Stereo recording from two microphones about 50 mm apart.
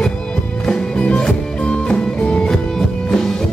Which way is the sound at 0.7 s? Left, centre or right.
Centre.